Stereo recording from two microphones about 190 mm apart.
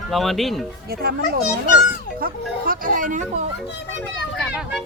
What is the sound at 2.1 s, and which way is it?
Speech, 50° right (ahead or behind).